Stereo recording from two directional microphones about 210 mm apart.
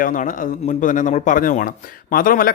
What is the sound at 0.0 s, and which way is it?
Speech, 40° left (ahead or behind).